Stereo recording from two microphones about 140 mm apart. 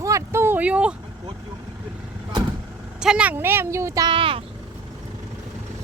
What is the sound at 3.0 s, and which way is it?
Speech, 5° right (ahead or behind).